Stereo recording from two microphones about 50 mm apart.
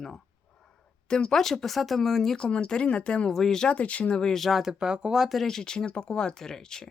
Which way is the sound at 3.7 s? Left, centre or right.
Left.